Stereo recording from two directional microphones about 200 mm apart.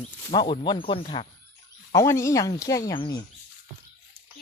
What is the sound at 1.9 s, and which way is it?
Speech, 15° left (ahead or behind).